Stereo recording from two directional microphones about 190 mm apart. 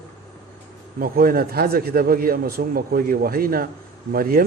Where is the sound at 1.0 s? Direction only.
50° right (ahead or behind).